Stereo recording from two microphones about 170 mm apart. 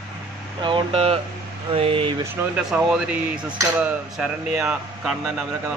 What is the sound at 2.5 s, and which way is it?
Speech, 5° right (ahead or behind).